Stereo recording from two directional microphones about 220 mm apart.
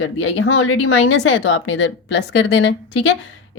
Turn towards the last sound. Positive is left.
turn(degrees=55)  # may be behind; listen again after turning